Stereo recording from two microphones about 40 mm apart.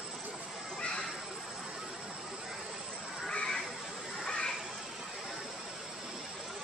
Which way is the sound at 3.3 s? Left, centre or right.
Centre.